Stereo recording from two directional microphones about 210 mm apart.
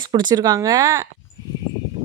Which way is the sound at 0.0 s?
20° right (ahead or behind).